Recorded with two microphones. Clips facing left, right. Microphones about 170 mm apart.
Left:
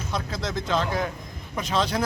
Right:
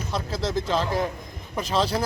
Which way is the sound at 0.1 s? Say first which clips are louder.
Right 3 dB; 5° right (ahead or behind).